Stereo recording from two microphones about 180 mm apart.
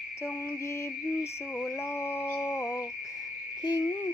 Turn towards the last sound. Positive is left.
turn(degrees=25)  # may be behind; listen again after turning